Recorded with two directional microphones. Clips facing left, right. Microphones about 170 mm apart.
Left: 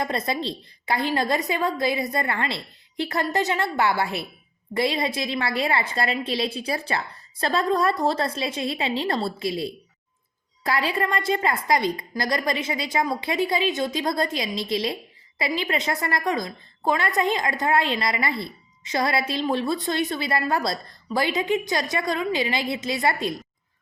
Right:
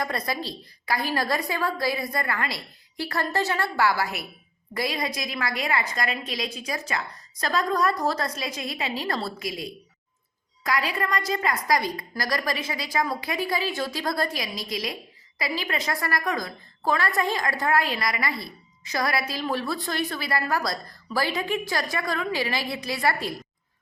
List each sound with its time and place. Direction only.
0.0 s a woman's voice: 25° left (ahead or behind)